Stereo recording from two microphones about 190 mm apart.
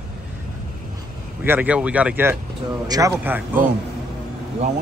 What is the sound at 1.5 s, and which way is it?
Speech, 5° right (ahead or behind).